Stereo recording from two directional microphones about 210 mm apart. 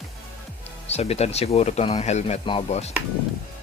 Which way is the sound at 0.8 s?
30° left (ahead or behind).